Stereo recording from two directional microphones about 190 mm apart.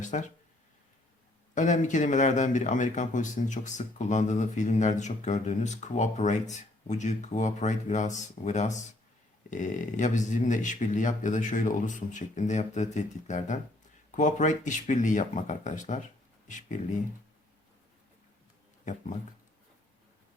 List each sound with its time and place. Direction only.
0.0 s a sound: 40° left (ahead or behind)
1.5 s speech: 40° left (ahead or behind)
18.9 s speech: 40° left (ahead or behind)